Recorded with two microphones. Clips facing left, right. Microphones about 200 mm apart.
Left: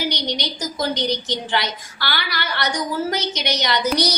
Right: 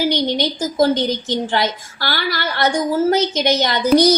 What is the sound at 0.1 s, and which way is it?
A woman's voice, 50° right (ahead or behind).